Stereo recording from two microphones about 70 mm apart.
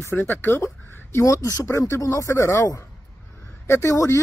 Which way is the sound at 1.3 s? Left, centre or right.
Left.